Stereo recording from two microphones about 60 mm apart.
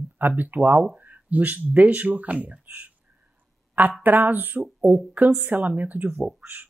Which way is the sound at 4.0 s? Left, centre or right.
Right.